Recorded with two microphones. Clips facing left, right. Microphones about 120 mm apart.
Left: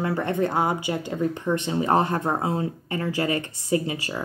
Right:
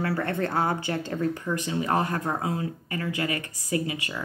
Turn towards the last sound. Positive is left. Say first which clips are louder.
# left 4 dB
turn(degrees=30)  # may be behind; listen again after turning